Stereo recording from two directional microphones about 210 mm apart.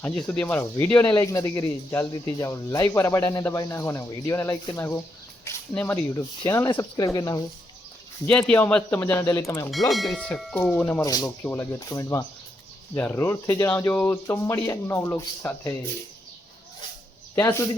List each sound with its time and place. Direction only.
0.0 s speech: 5° left (ahead or behind)
8.3 s speech: 5° left (ahead or behind)
9.9 s speech: centre (ahead or behind)
17.3 s speech: 15° left (ahead or behind)